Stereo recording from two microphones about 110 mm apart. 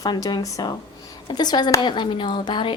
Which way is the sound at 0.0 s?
35° left (ahead or behind).